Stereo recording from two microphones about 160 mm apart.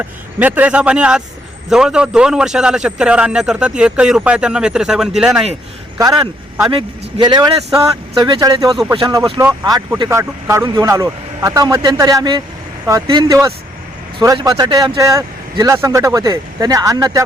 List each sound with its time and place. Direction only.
0.0 s a man's voice: 10° right (ahead or behind)
6.7 s speech: 30° right (ahead or behind)